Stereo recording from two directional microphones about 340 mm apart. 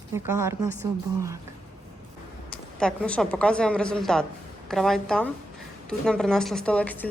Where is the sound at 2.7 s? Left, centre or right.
Centre.